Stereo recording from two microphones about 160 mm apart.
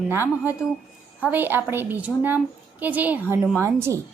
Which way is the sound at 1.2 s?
10° right (ahead or behind).